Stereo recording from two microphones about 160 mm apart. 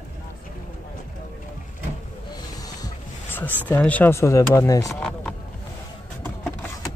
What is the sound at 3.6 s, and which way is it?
Speech, 10° left (ahead or behind).